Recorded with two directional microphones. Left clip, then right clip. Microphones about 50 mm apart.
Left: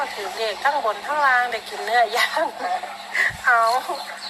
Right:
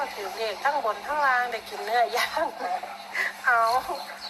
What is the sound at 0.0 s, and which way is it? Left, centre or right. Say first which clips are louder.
Speech: left 5 dB; left.